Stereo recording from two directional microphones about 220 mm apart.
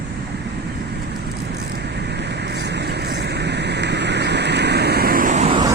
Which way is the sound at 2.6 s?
50° right (ahead or behind).